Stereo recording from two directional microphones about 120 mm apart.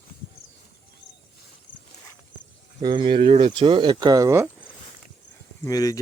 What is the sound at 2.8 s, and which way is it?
Speech, 40° right (ahead or behind).